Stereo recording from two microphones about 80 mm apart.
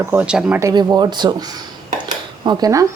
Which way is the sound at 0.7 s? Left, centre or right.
Right.